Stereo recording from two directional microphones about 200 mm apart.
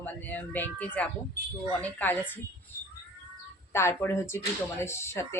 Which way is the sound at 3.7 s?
15° left (ahead or behind).